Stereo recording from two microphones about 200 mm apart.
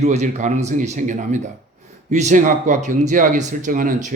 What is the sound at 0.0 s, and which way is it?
Speech, 35° right (ahead or behind).